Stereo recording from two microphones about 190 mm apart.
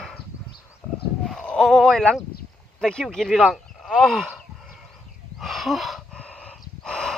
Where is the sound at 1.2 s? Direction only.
5° left (ahead or behind).